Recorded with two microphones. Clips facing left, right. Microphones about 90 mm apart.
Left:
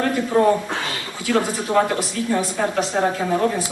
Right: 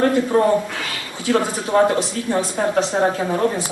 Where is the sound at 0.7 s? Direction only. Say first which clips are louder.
Left 2 dB; 30° left (ahead or behind).